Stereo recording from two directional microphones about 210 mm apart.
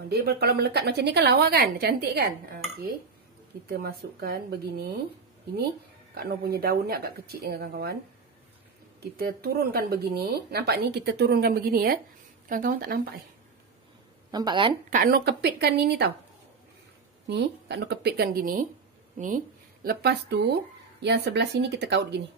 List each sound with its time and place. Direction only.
0.1 s speech: 50° right (ahead or behind)
6.1 s speech: 50° right (ahead or behind)
9.1 s speech: 45° right (ahead or behind)
14.3 s speech: 20° right (ahead or behind)
14.9 s speech: 45° right (ahead or behind)
17.3 s speech: 50° right (ahead or behind)